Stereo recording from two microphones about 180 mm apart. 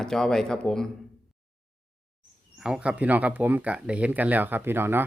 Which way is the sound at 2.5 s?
5° right (ahead or behind).